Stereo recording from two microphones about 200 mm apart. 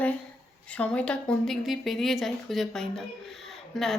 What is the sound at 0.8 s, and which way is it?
Speech, 5° left (ahead or behind).